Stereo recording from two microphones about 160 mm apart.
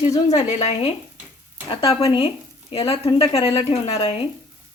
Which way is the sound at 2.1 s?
35° left (ahead or behind).